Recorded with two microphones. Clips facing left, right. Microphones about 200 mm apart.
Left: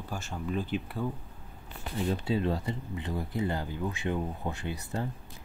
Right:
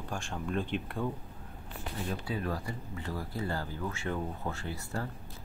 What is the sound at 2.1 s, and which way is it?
Speech, 25° left (ahead or behind).